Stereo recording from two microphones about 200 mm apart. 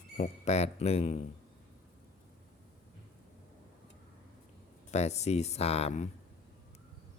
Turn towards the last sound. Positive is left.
turn(degrees=30)  # may be behind; listen again after turning